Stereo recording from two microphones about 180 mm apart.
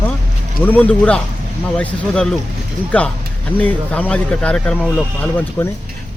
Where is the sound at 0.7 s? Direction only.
10° left (ahead or behind).